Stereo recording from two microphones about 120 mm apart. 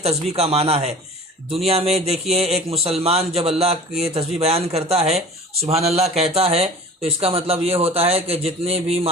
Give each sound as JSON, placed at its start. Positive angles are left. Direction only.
{"t": 0.0, "sound": "speech", "side_deg": -60}